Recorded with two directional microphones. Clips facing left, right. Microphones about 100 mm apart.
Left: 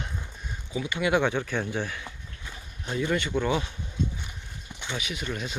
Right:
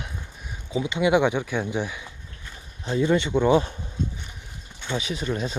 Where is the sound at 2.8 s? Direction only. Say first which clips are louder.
Right 6 dB; 25° right (ahead or behind).